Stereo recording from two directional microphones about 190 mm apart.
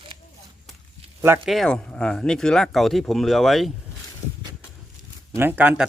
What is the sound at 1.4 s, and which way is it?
Speech, centre (ahead or behind).